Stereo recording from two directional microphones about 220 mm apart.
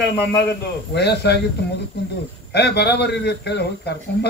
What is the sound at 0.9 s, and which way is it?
Speech, 50° left (ahead or behind).